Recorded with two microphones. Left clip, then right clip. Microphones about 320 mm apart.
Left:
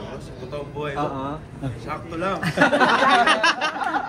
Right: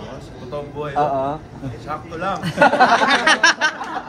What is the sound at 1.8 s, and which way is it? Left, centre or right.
Speech, centre.